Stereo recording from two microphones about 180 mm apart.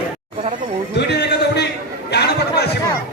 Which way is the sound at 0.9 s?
70° left (ahead or behind).